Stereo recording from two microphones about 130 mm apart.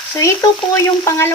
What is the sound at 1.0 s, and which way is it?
Speech, 20° left (ahead or behind).